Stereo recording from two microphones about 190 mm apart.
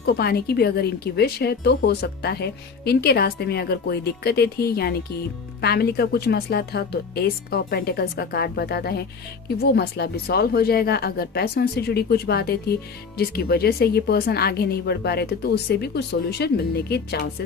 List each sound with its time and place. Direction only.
0.0 s speech: 55° left (ahead or behind)